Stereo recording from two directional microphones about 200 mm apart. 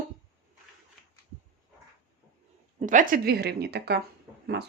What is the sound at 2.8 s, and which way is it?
Speech, 40° right (ahead or behind).